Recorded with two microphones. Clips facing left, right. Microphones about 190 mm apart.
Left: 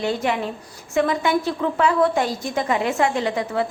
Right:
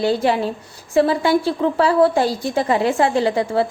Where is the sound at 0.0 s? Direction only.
35° right (ahead or behind).